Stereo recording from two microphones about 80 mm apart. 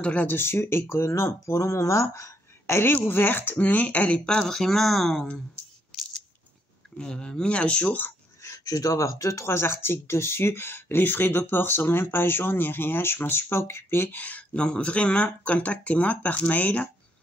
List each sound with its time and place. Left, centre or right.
0.0 s speech: centre
0.4 s speech: left; by 5.3 s centre
7.0 s speech: centre
8.4 s speech: left; by 16.9 s centre